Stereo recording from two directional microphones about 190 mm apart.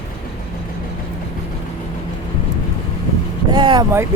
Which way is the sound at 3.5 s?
25° right (ahead or behind).